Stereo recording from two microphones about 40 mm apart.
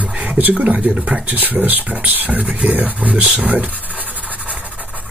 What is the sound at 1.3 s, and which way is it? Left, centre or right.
Beatboxing, right.